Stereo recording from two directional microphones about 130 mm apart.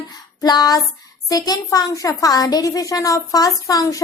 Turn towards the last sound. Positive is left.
turn(degrees=25)  # may be behind; listen again after turning